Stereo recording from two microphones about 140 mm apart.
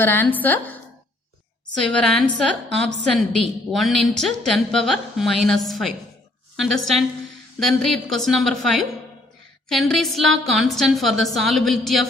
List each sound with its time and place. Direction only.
0.0 s a woman's voice: 15° left (ahead or behind)